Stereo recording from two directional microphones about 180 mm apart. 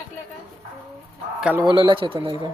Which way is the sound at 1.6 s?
25° right (ahead or behind).